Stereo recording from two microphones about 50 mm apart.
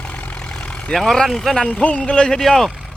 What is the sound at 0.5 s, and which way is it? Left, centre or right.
Vehicle, centre.